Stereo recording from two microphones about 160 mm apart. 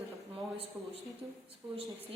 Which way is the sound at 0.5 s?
35° right (ahead or behind).